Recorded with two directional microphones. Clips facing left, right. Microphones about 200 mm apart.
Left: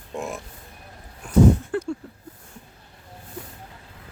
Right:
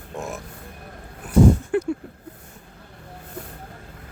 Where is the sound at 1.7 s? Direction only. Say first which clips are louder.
Right 4 dB; 15° right (ahead or behind).